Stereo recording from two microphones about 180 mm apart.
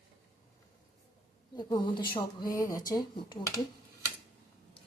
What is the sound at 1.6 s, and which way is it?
Speech, 25° left (ahead or behind).